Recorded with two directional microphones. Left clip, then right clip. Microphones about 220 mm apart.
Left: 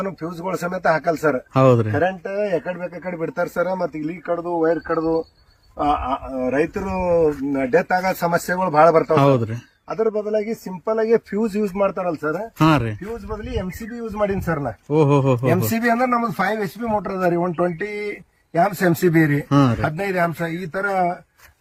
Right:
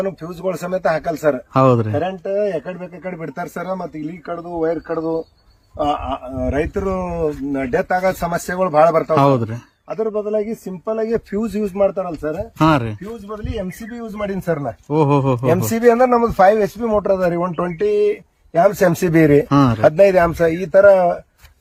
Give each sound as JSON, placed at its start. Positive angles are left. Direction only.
{"t": 0.2, "sound": "speech", "side_deg": -10}
{"t": 2.0, "sound": "speech", "side_deg": -10}
{"t": 4.9, "sound": "speech", "side_deg": 10}
{"t": 5.8, "sound": "speech", "side_deg": -10}
{"t": 9.0, "sound": "speech", "side_deg": 0}
{"t": 9.9, "sound": "speech", "side_deg": -10}
{"t": 12.2, "sound": "speech", "side_deg": 0}
{"t": 13.4, "sound": "speech", "side_deg": -10}
{"t": 15.7, "sound": "speech", "side_deg": -20}
{"t": 19.5, "sound": "speech", "side_deg": 0}
{"t": 19.8, "sound": "speech", "side_deg": -30}